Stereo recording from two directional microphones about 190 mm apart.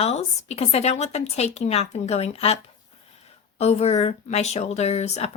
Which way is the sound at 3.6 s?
35° left (ahead or behind).